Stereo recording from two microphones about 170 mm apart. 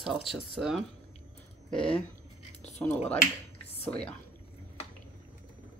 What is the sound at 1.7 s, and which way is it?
Speech, 30° left (ahead or behind).